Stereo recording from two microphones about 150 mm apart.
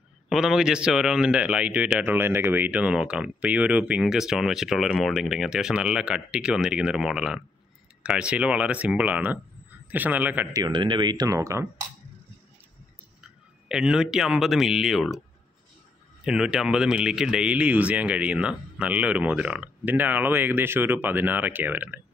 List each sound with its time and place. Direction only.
0.3 s a man's voice: 5° right (ahead or behind)
10.5 s speech: 30° right (ahead or behind)
13.2 s speech: 5° right (ahead or behind)
16.3 s speech: 5° right (ahead or behind)